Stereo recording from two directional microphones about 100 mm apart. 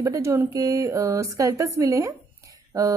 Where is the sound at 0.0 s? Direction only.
30° right (ahead or behind).